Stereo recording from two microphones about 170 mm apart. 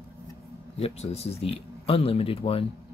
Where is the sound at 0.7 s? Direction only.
35° left (ahead or behind).